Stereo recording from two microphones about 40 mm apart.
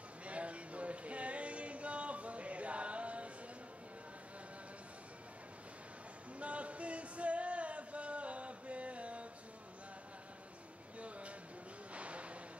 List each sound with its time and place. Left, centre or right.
0.2 s music: right
6.4 s music: right
11.0 s a sound: right